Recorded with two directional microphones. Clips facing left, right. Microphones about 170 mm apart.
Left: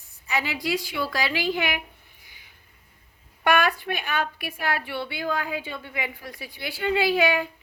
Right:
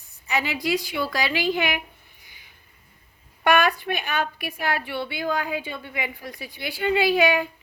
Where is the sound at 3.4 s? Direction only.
20° right (ahead or behind).